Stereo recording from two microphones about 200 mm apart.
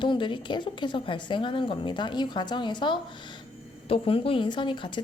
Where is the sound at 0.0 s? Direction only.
25° left (ahead or behind).